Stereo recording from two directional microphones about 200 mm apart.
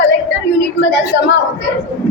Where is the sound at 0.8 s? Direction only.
65° left (ahead or behind).